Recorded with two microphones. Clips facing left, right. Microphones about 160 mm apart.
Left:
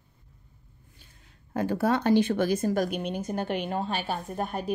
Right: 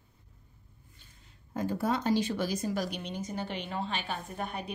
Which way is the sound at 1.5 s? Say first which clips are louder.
Left 5 dB; 70° left (ahead or behind).